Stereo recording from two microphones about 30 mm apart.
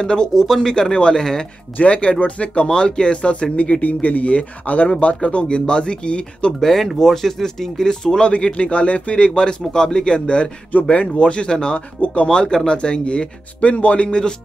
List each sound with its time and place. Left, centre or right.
0.0 s speech: left
0.3 s speech: centre
0.7 s speech: left
1.8 s speech: left
2.6 s speech: left
3.8 s speech: left
5.0 s speech: left
6.6 s speech: centre
8.2 s speech: left
10.7 s speech: left
11.1 s speech: left